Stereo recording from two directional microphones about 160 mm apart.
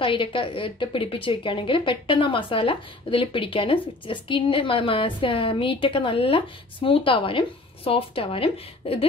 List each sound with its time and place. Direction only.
0.0 s a woman's voice: 30° left (ahead or behind)